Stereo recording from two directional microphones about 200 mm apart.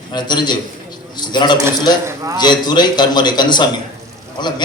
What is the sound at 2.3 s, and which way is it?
A man's voice, 20° left (ahead or behind).